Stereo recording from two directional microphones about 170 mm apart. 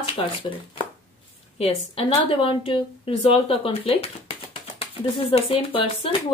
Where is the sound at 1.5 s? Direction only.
35° left (ahead or behind).